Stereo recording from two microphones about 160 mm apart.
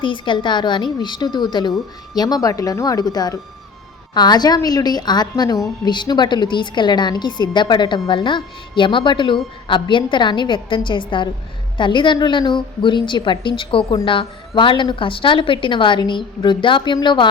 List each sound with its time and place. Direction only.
0.0 s a woman's voice: 30° left (ahead or behind)